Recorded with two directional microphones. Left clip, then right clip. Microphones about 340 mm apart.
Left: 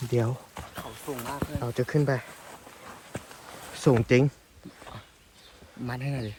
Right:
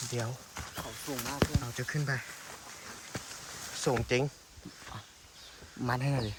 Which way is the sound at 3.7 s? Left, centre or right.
Centre.